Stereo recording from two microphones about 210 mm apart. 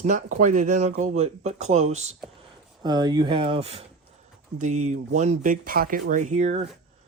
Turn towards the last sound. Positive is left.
turn(degrees=-35)  # may be behind; listen again after turning